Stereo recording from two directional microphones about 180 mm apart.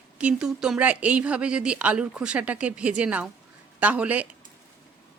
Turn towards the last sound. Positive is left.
turn(degrees=-5)  # may be behind; listen again after turning